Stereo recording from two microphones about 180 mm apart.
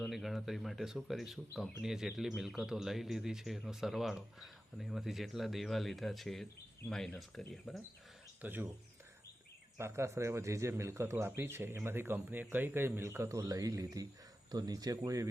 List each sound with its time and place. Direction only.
0.0 s speech: centre (ahead or behind)
8.4 s a man's voice: 10° right (ahead or behind)
9.7 s a man's voice: 15° right (ahead or behind)